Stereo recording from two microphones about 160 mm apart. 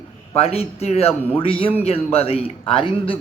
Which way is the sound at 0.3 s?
40° left (ahead or behind).